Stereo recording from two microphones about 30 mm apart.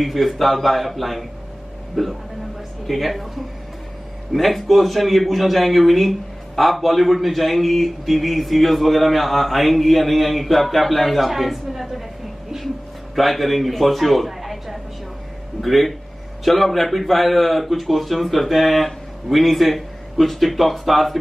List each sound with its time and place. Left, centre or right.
0.0 s mantra: centre
4.3 s mantra: centre
13.1 s mantra: centre